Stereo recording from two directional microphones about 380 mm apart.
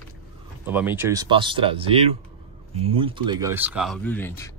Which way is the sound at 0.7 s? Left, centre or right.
Centre.